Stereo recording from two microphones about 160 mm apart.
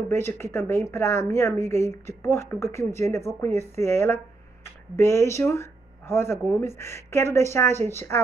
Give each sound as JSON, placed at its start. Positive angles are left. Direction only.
{"t": 0.1, "sound": "a woman's voice", "side_deg": 15}